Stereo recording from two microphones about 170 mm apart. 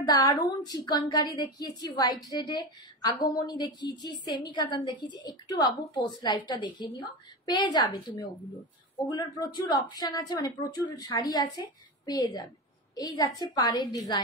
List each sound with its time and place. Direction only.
0.0 s speech: 20° left (ahead or behind)